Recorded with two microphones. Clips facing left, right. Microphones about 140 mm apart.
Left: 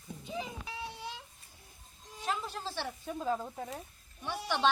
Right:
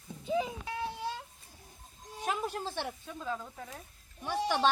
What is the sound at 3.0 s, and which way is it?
Speech, 30° left (ahead or behind).